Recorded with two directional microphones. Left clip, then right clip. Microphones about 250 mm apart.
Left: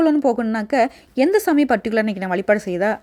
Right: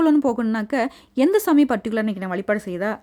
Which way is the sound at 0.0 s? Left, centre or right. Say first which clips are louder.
Left 2 dB; centre.